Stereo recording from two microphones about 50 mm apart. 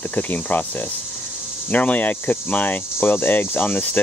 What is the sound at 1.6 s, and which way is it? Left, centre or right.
Speech, left.